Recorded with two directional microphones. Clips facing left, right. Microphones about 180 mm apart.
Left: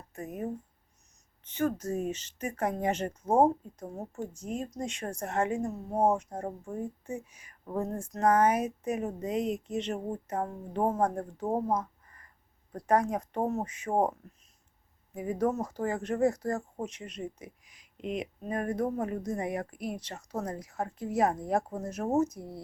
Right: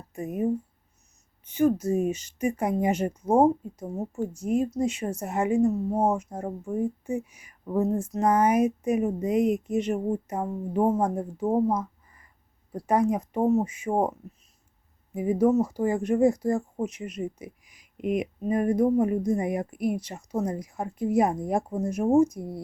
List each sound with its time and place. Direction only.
0.1 s speech: 10° right (ahead or behind)